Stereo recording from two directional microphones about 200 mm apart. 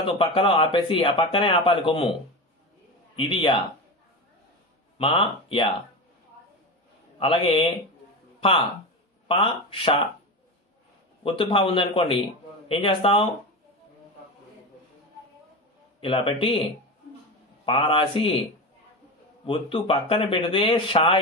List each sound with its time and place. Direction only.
0.0 s speech: 25° left (ahead or behind)
3.2 s speech: 25° left (ahead or behind)
4.9 s speech: 25° left (ahead or behind)
7.2 s speech: 25° left (ahead or behind)
11.2 s speech: 25° left (ahead or behind)
16.0 s speech: 25° left (ahead or behind)
17.6 s speech: 25° left (ahead or behind)
19.4 s speech: 25° left (ahead or behind)